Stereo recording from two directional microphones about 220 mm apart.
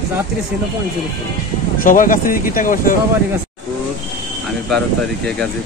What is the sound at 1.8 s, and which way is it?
Speech, 40° left (ahead or behind).